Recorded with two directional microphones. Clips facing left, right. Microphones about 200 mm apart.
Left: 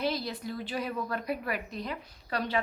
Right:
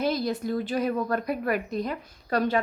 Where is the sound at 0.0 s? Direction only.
45° right (ahead or behind).